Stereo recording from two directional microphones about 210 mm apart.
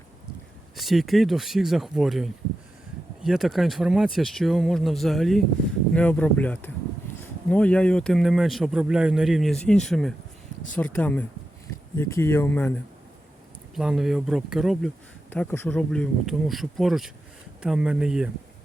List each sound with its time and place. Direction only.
0.8 s speech: centre (ahead or behind)
13.7 s speech: centre (ahead or behind)
15.3 s speech: 10° left (ahead or behind)